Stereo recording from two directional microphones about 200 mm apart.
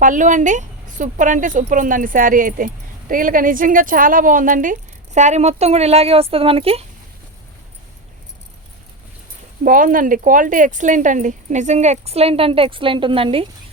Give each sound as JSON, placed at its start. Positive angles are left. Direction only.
{"t": 0.0, "sound": "speech", "side_deg": -40}
{"t": 9.6, "sound": "speech", "side_deg": -40}